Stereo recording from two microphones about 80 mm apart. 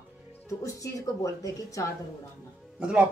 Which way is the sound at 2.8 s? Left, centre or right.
Centre.